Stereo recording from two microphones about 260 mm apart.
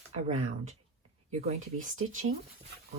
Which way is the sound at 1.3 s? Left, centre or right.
Right.